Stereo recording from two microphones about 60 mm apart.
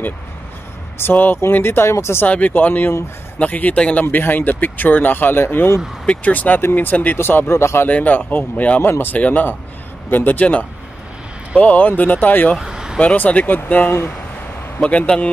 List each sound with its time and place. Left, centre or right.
1.1 s speech: left
2.2 s speech: left
6.0 s speech: left
7.2 s speech: left
7.9 s speech: left
12.5 s vehicle: centre
13.0 s speech: left